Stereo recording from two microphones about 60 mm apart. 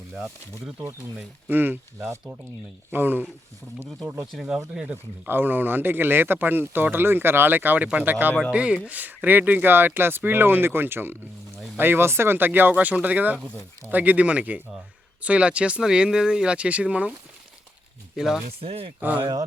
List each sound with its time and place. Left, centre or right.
0.1 s speech: centre
0.9 s speech: right
2.9 s speech: right
4.4 s speech: centre
5.3 s speech: right
8.4 s speech: centre
18.2 s speech: centre
19.0 s speech: right